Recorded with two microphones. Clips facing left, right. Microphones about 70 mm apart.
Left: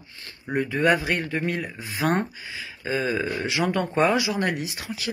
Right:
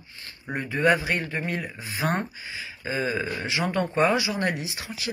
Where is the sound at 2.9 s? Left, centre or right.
Right.